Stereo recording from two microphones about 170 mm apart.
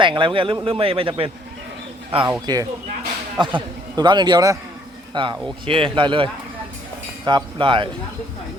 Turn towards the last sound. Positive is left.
turn(degrees=-30)  # may be behind; listen again after turning